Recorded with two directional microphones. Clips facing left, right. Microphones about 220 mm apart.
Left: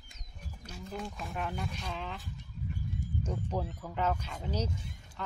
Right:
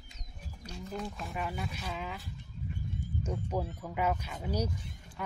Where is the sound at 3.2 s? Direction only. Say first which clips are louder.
Right 2 dB; 10° right (ahead or behind).